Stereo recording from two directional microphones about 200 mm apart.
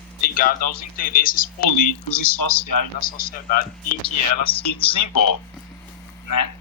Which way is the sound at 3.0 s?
45° left (ahead or behind).